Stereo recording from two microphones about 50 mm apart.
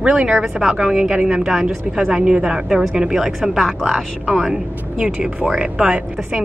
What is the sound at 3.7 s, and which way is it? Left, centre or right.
Speech, centre.